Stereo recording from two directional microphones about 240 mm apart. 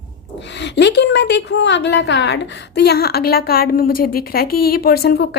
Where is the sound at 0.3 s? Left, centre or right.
Left.